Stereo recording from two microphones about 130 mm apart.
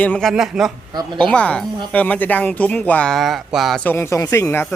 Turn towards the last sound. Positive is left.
turn(degrees=20)  # may be behind; listen again after turning